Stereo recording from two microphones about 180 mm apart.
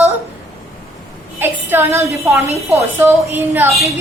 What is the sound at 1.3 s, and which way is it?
A woman's voice, 10° right (ahead or behind).